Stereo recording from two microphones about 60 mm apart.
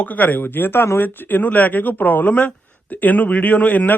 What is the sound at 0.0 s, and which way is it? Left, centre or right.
Speech, left.